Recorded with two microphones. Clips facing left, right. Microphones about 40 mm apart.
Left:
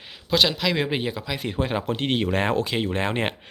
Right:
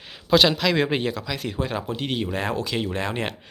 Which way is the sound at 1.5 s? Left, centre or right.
Left.